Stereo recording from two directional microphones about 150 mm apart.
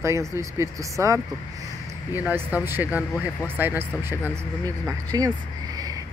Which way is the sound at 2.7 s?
10° right (ahead or behind).